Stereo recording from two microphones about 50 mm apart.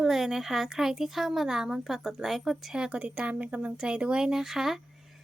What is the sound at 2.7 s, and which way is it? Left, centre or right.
Speech, centre.